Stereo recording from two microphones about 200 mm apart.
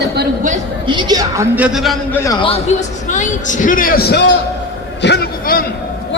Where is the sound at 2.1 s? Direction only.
15° left (ahead or behind).